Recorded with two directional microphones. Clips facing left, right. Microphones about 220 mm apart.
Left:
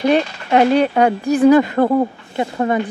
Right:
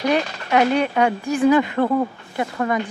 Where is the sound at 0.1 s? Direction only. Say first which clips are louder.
Left 2 dB; 35° left (ahead or behind).